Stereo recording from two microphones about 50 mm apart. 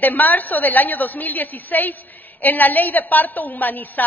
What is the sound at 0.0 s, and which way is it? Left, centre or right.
A woman's voice, left.